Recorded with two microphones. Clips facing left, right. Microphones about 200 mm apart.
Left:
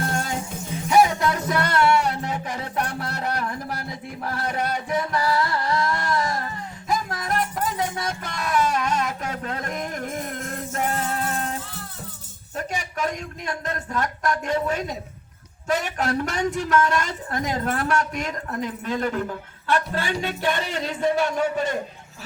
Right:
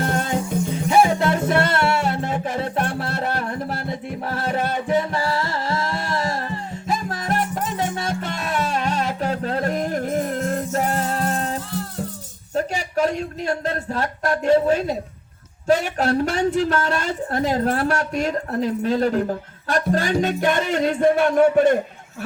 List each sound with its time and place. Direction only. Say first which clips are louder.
0.9 s music: right 1 dB; 25° right (ahead or behind)
12.5 s a sound: right 7 dB; 30° right (ahead or behind)
15.6 s a woman's voice: right 5 dB; 30° right (ahead or behind); by 21.8 s 55° right (ahead or behind)